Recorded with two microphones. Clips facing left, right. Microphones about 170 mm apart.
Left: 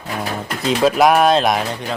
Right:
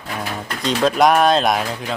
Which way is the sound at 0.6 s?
5° left (ahead or behind).